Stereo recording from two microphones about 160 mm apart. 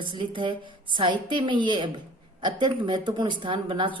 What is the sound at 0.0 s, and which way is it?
A woman's voice, 30° right (ahead or behind).